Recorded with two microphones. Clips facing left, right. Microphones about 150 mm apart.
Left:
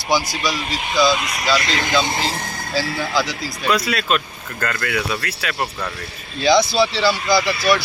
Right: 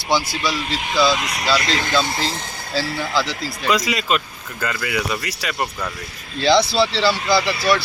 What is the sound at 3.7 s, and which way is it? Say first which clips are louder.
Speech: even; 15° right (ahead or behind).